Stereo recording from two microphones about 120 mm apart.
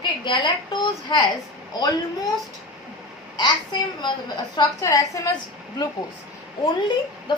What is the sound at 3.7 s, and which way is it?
A woman's voice, 40° left (ahead or behind).